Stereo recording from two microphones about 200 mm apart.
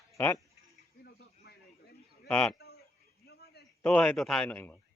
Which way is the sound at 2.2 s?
5° left (ahead or behind).